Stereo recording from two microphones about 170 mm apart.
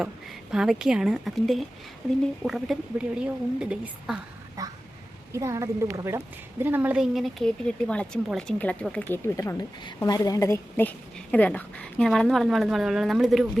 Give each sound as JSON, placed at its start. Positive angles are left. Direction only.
{"t": 0.5, "sound": "a woman's voice", "side_deg": -5}
{"t": 4.6, "sound": "a woman's voice", "side_deg": -20}